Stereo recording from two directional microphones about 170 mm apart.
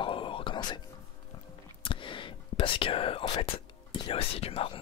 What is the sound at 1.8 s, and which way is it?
Whispering, 30° left (ahead or behind).